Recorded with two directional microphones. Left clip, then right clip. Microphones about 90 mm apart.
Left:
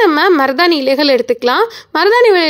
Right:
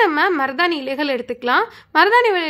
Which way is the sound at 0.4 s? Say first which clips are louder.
Left 7 dB; 35° left (ahead or behind).